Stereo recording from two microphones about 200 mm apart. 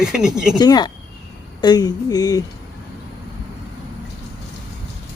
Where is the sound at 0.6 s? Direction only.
20° left (ahead or behind).